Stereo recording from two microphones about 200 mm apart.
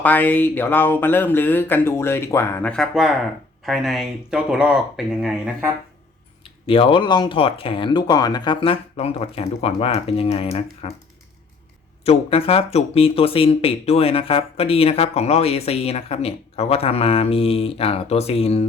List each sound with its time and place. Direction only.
0.0 s speech: 10° left (ahead or behind)
6.4 s speech: 25° left (ahead or behind)
12.0 s speech: 30° left (ahead or behind)